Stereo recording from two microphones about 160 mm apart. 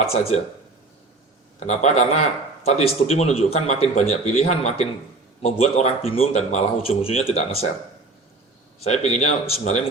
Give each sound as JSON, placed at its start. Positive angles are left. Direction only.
{"t": 1.5, "sound": "speech", "side_deg": 45}
{"t": 8.8, "sound": "speech", "side_deg": 45}